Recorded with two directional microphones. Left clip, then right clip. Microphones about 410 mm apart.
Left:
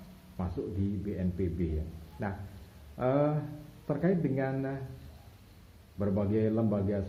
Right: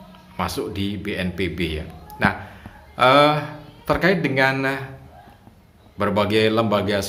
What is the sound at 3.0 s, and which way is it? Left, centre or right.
A man's voice, right.